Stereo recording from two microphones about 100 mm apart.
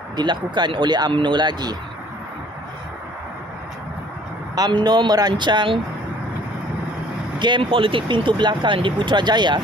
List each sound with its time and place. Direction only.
0.1 s speech: 50° right (ahead or behind)
4.6 s speech: 45° right (ahead or behind)
7.3 s speech: 50° right (ahead or behind)